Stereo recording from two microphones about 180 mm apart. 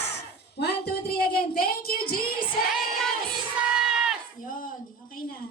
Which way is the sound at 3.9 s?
5° right (ahead or behind).